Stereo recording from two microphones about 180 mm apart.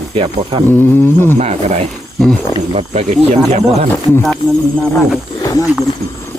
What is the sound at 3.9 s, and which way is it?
Speech, 10° left (ahead or behind).